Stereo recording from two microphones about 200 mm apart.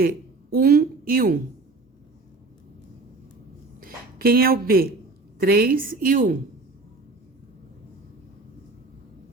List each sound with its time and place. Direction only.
0.5 s a woman's voice: 50° right (ahead or behind)
3.8 s a woman's voice: 45° right (ahead or behind)